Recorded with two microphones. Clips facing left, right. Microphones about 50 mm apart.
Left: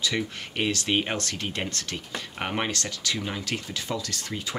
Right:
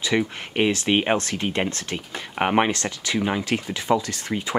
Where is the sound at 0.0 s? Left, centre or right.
Right.